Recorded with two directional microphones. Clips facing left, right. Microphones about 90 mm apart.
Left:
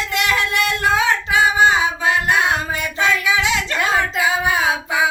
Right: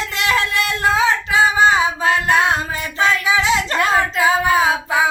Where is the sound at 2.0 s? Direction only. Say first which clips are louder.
Right 2 dB; 30° right (ahead or behind).